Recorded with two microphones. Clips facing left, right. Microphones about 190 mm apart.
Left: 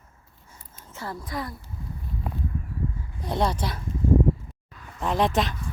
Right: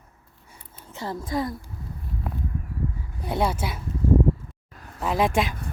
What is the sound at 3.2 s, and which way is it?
Speech, 5° right (ahead or behind).